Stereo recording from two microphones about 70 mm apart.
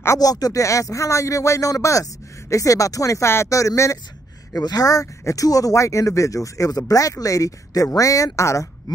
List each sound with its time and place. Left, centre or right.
0.2 s speech: left
4.6 s speech: left